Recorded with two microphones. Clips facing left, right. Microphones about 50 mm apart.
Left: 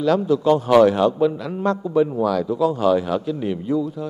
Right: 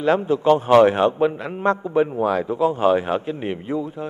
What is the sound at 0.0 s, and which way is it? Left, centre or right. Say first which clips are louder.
A man's voice: even; right.